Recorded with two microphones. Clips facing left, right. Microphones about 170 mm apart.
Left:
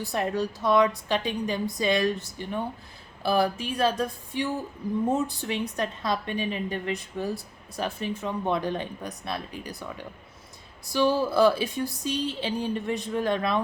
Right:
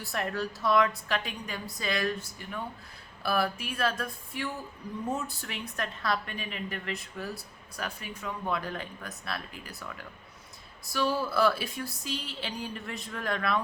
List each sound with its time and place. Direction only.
0.1 s speech: 20° left (ahead or behind)